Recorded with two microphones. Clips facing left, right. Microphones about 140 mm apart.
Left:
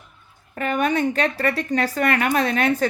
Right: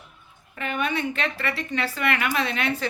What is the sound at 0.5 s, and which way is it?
A woman's voice, 45° left (ahead or behind).